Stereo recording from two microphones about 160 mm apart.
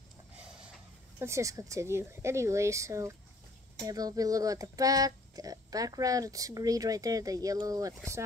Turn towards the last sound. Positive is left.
turn(degrees=-20)  # may be behind; listen again after turning